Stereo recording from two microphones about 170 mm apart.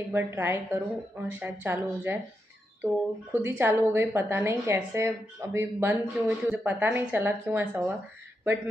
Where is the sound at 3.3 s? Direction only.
10° right (ahead or behind).